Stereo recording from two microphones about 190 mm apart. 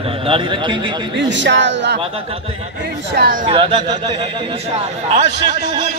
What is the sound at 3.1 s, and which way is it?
Speech, 50° right (ahead or behind).